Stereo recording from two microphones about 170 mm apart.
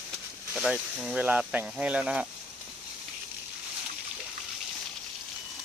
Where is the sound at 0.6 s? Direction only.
5° right (ahead or behind).